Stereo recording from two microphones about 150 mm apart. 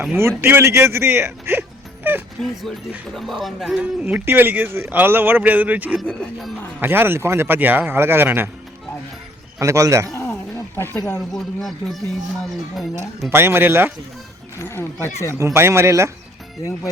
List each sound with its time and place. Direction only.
0.0 s speech: 15° right (ahead or behind)
2.4 s speech: centre (ahead or behind)
4.0 s speech: 15° right (ahead or behind)
6.0 s speech: centre (ahead or behind)
6.7 s speech: 15° right (ahead or behind)
9.6 s speech: 20° right (ahead or behind)
10.2 s music: 15° left (ahead or behind)
11.3 s speech: centre (ahead or behind)
13.3 s speech: 15° right (ahead or behind)
14.6 s speech: 20° left (ahead or behind)
15.4 s speech: 15° right (ahead or behind)